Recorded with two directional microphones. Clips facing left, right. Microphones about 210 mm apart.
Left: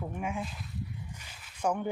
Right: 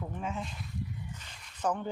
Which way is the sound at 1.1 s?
5° left (ahead or behind).